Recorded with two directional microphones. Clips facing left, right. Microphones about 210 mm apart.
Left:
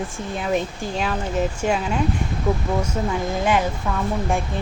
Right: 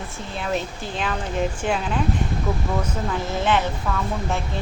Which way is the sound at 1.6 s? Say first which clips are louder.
Left 3 dB; 40° left (ahead or behind).